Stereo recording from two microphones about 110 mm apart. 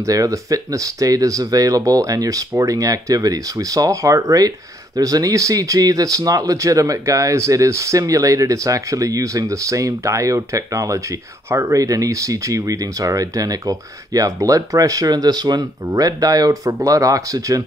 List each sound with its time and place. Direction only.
0.0 s speech: 30° right (ahead or behind)